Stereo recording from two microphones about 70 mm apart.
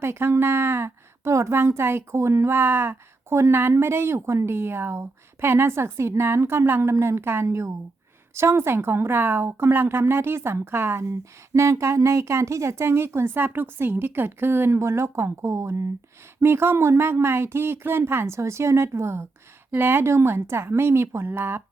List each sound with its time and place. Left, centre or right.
0.0 s a woman's voice: right